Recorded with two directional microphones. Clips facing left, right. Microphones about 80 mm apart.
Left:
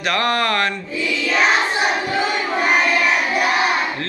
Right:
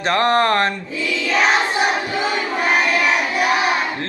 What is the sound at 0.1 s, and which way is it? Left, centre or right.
Speech, right.